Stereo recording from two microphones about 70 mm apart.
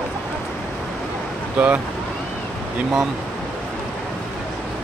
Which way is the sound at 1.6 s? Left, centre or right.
Centre.